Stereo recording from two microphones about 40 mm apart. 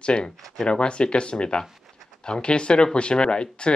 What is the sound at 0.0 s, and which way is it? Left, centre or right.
Speech, left.